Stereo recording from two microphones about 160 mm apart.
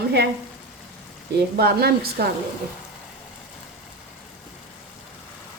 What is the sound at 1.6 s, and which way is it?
Speech, 75° right (ahead or behind).